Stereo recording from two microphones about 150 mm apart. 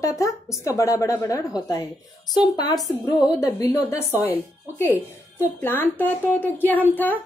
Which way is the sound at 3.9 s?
20° left (ahead or behind).